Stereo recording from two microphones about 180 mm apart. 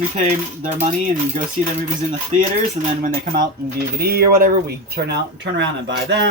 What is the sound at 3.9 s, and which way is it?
Speech, 60° right (ahead or behind).